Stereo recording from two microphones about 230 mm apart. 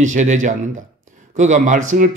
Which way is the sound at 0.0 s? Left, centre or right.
Right.